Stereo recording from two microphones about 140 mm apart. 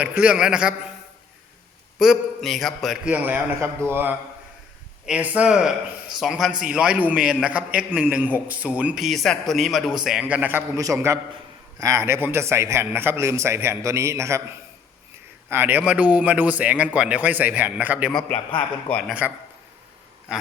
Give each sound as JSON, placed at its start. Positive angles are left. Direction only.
{"t": 0.0, "sound": "speech", "side_deg": -10}
{"t": 2.0, "sound": "a man's voice", "side_deg": 0}
{"t": 10.8, "sound": "a man's voice", "side_deg": -25}
{"t": 18.1, "sound": "a man's voice", "side_deg": 5}